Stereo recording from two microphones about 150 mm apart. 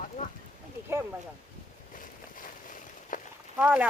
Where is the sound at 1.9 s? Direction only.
65° left (ahead or behind).